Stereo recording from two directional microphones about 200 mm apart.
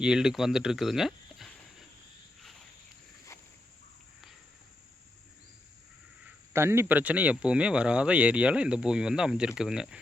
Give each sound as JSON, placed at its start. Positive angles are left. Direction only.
{"t": 0.0, "sound": "speech", "side_deg": -5}
{"t": 6.5, "sound": "speech", "side_deg": -10}